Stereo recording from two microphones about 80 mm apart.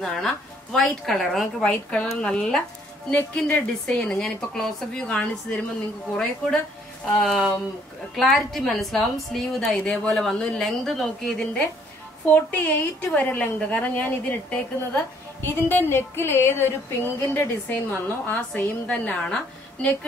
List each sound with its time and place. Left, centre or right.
0.0 s a woman's voice: centre
1.6 s a woman's voice: centre
7.1 s a woman's voice: centre
12.4 s a woman's voice: left